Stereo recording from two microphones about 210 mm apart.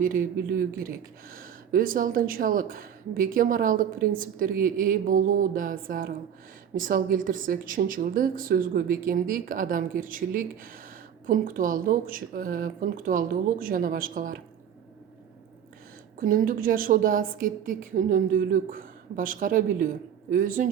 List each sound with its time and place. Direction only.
0.0 s speech: 40° right (ahead or behind)
16.2 s speech: 40° right (ahead or behind)